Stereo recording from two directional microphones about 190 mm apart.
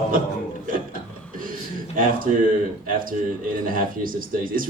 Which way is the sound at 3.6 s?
45° right (ahead or behind).